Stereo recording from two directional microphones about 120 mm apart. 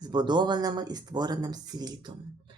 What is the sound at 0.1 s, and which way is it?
Speech, 40° right (ahead or behind).